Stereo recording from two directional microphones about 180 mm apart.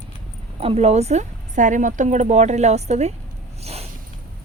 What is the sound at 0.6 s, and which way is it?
Speech, 35° right (ahead or behind).